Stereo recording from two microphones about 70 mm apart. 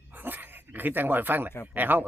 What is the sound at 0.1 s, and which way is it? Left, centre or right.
Dog, right.